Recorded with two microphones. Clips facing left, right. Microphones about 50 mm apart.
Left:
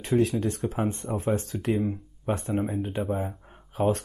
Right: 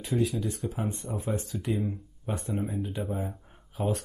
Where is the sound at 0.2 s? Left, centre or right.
Left.